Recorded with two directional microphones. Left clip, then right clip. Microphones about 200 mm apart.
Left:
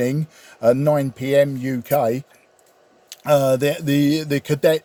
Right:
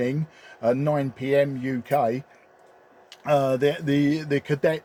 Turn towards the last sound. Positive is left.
turn(degrees=45)  # may be behind; listen again after turning